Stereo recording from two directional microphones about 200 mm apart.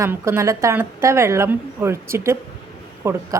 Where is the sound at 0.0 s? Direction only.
15° right (ahead or behind).